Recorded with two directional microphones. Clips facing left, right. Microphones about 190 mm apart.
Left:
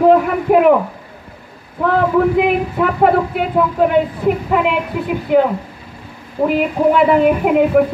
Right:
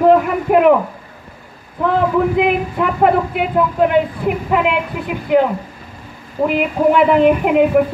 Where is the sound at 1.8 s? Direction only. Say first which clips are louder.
Left 1 dB; centre (ahead or behind).